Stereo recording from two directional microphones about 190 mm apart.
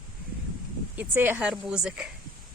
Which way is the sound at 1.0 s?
10° right (ahead or behind).